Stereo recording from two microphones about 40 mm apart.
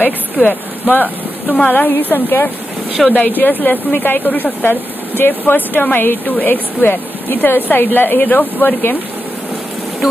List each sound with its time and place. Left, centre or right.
0.5 s a woman's voice: left
3.1 s speech: left
6.2 s speech: left